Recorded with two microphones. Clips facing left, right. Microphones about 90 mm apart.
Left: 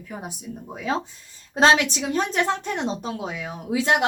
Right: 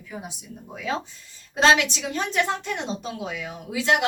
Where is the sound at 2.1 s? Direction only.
30° left (ahead or behind).